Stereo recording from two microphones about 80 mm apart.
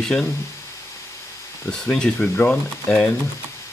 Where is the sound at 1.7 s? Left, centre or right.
Centre.